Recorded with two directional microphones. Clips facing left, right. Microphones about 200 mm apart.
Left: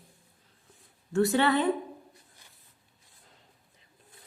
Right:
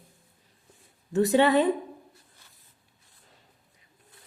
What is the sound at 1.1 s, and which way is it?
Speech, 20° right (ahead or behind).